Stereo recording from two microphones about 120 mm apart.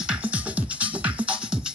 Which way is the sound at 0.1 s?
10° right (ahead or behind).